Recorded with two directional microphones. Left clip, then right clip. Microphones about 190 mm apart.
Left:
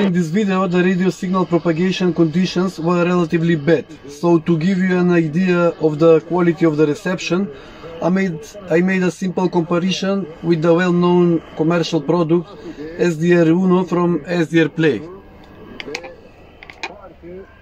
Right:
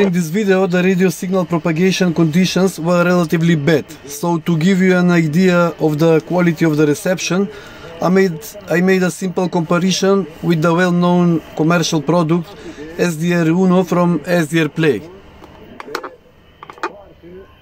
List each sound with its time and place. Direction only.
0.1 s speech: 60° right (ahead or behind); by 15.0 s 40° right (ahead or behind)